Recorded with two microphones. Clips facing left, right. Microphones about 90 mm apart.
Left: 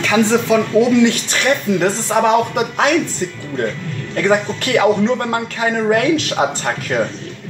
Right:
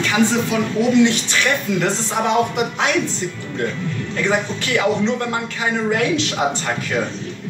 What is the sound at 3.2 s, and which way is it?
Speech, 50° left (ahead or behind).